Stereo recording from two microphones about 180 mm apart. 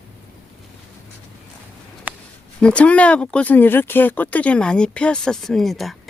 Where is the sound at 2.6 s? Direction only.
5° left (ahead or behind).